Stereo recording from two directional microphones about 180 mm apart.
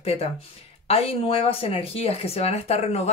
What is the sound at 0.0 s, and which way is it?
Speech, 35° left (ahead or behind).